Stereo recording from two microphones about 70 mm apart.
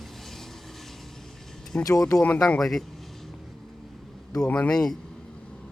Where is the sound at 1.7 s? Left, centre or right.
Left.